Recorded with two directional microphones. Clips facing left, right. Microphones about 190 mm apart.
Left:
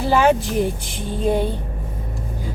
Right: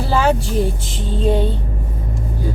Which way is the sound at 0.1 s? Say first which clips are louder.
Left 1 dB; 15° left (ahead or behind).